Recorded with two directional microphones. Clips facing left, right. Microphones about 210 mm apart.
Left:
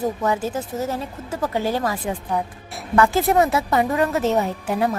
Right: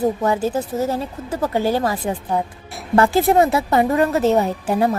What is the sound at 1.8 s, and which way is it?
A woman's voice, 30° right (ahead or behind).